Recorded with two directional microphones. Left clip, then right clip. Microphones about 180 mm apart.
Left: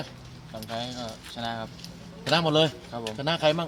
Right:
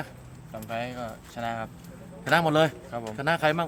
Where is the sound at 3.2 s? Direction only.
15° left (ahead or behind).